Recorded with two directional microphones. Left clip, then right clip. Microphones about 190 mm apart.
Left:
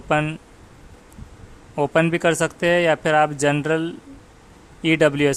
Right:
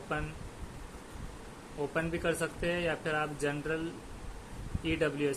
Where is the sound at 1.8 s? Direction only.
50° left (ahead or behind).